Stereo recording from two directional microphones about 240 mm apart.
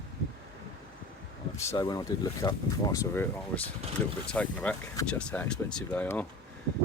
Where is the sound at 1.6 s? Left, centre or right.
Centre.